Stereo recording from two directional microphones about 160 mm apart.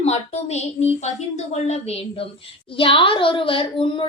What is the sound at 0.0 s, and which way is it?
A woman's voice, 40° left (ahead or behind).